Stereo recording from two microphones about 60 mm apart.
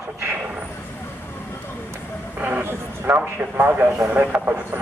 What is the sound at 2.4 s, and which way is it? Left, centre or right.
A man's voice, right.